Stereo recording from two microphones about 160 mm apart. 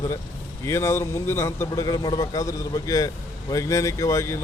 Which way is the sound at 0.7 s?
15° left (ahead or behind).